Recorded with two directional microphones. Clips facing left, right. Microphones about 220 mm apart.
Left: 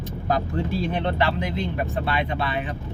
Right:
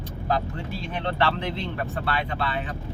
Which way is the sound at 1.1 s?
15° left (ahead or behind).